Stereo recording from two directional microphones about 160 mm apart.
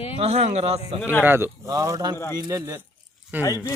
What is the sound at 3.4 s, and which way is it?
Speech, 20° left (ahead or behind).